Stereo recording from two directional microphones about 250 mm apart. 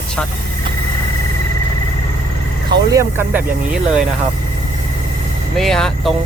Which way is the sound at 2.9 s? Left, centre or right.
Centre.